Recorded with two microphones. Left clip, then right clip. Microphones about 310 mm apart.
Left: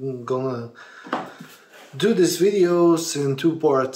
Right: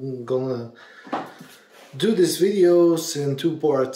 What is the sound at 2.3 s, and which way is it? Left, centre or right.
Speech, left.